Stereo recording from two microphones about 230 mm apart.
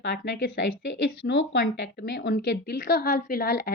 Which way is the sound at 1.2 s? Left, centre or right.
Left.